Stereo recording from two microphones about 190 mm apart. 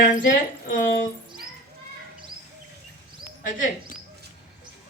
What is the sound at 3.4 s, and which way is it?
Speech, 45° left (ahead or behind).